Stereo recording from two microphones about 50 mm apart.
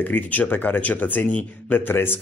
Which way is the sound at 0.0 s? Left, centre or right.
Left.